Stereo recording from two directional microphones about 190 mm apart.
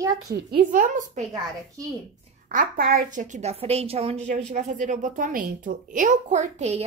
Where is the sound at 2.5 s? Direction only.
45° right (ahead or behind).